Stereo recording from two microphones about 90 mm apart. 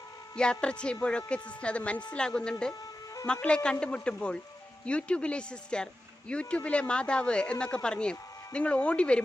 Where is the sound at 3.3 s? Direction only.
10° left (ahead or behind).